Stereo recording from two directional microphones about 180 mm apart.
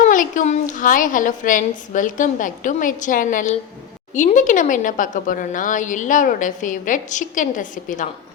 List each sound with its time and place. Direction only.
0.1 s speech: 45° left (ahead or behind)